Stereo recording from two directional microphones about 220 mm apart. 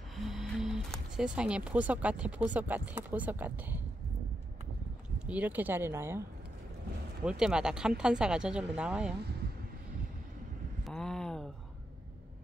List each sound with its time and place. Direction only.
0.1 s speech: centre (ahead or behind)
5.2 s speech: 5° right (ahead or behind)
7.2 s a woman's voice: 5° right (ahead or behind)
10.8 s a sound: 5° left (ahead or behind)